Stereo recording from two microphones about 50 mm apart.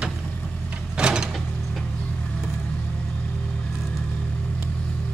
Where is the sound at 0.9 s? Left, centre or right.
Centre.